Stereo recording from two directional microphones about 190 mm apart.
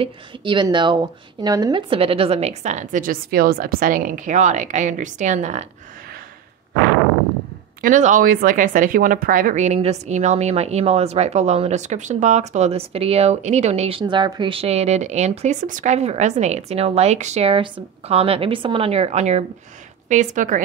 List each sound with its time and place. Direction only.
0.0 s speech: 25° right (ahead or behind)
7.8 s speech: 40° right (ahead or behind)